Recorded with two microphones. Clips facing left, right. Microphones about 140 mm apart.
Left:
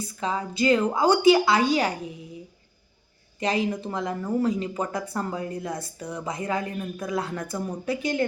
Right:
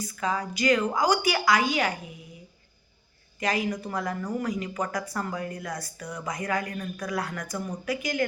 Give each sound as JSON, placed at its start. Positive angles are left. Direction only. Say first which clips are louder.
{"t": 0.0, "sound": "speech", "louder": "left 1 dB", "side_deg": 30}
{"t": 3.4, "sound": "speech", "louder": "left 3 dB", "side_deg": 25}